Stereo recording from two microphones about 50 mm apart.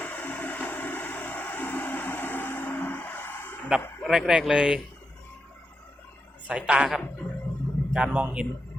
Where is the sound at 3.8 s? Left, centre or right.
Left.